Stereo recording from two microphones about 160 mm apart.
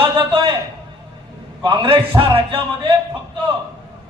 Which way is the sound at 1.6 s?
30° right (ahead or behind).